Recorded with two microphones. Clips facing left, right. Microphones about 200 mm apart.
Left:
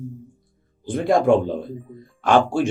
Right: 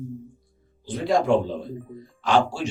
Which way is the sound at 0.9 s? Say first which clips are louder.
Left 4 dB; 50° left (ahead or behind).